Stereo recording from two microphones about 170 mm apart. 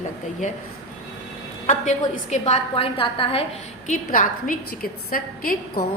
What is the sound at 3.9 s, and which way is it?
A woman's voice, 50° left (ahead or behind).